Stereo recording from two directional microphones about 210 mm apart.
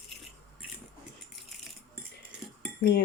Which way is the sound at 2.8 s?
50° left (ahead or behind).